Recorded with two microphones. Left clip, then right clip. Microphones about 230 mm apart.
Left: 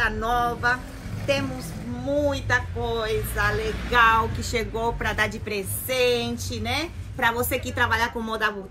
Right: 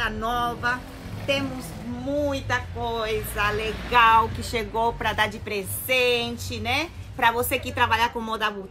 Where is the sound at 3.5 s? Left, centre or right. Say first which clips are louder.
Even; right.